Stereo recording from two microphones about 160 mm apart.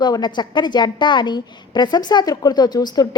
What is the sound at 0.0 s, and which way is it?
A woman's voice, 25° left (ahead or behind).